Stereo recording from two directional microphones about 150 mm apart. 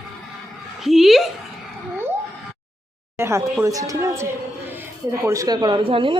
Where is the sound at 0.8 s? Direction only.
Centre (ahead or behind).